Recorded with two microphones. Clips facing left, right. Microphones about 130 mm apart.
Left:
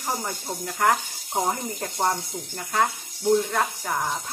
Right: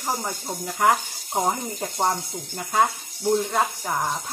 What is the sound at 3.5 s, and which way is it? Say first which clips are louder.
Speech: right 2 dB; 15° right (ahead or behind).